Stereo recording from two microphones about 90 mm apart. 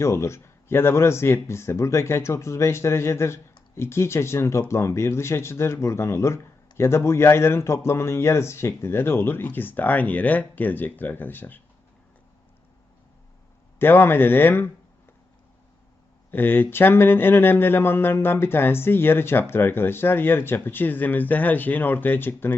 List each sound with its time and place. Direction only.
0.0 s speech: 30° left (ahead or behind)
13.7 s speech: 25° left (ahead or behind)
16.3 s speech: 20° left (ahead or behind)